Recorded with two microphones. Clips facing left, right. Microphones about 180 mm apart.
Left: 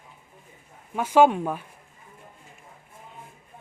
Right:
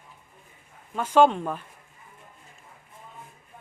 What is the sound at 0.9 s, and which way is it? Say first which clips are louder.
Speech: left 1 dB; 10° left (ahead or behind).